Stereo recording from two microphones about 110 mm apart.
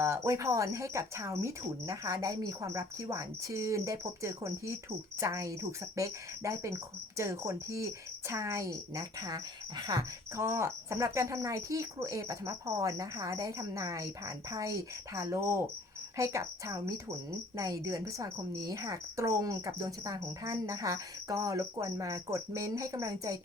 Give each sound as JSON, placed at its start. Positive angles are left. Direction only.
{"t": 0.0, "sound": "a woman's voice", "side_deg": -25}
{"t": 10.3, "sound": "a woman's voice", "side_deg": -25}